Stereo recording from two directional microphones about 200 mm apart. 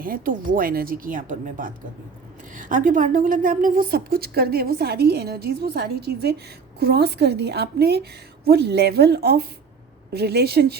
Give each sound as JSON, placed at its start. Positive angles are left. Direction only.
{"t": 0.0, "sound": "a woman's voice", "side_deg": -45}